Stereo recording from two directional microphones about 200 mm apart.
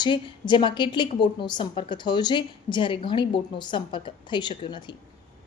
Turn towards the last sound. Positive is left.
turn(degrees=20)  # may be behind; listen again after turning